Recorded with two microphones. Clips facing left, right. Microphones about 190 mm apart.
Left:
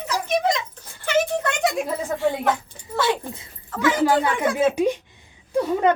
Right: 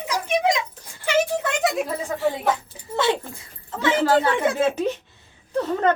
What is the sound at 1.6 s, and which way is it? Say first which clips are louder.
Speech: even; 5° right (ahead or behind).